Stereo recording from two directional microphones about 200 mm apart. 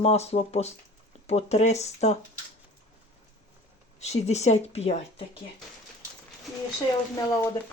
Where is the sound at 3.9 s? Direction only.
35° left (ahead or behind).